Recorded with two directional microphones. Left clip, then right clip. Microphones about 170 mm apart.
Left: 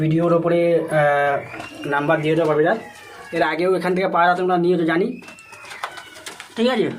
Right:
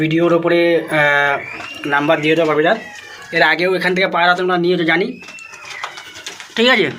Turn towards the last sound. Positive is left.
turn(degrees=-20)  # may be behind; listen again after turning